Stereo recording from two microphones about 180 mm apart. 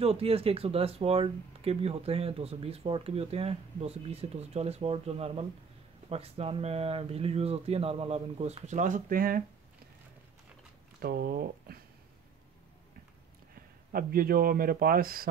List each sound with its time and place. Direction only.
0.0 s speech: 35° right (ahead or behind); by 9.4 s 55° right (ahead or behind)
11.0 s speech: 60° right (ahead or behind)
13.9 s speech: 55° right (ahead or behind)